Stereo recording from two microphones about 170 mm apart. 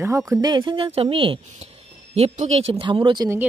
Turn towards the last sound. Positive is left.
turn(degrees=-25)  # may be behind; listen again after turning